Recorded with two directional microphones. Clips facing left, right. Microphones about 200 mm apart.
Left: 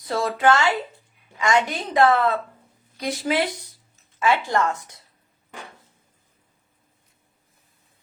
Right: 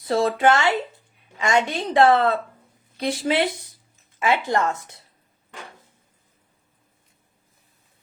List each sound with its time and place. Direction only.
0.0 s a woman's voice: 25° right (ahead or behind)